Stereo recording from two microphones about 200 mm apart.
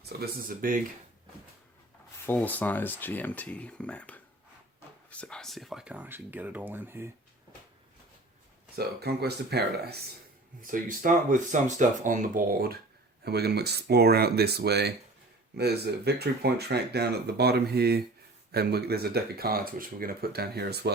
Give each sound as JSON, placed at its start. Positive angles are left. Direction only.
{"t": 0.2, "sound": "speech", "side_deg": -45}
{"t": 2.2, "sound": "speech", "side_deg": 10}
{"t": 8.7, "sound": "speech", "side_deg": -50}
{"t": 10.6, "sound": "speech", "side_deg": -40}